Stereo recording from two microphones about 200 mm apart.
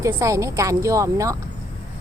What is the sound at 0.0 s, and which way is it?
A woman's voice, 15° right (ahead or behind).